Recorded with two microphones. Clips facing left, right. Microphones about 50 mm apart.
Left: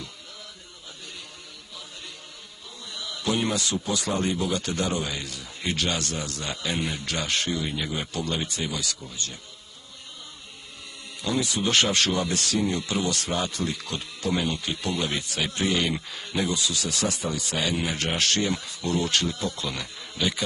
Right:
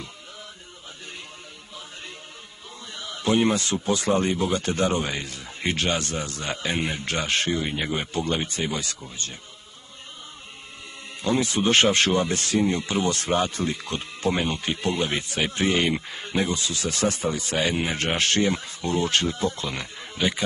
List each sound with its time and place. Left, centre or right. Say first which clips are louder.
2.9 s speech: right 4 dB; right
11.2 s speech: right 4 dB; right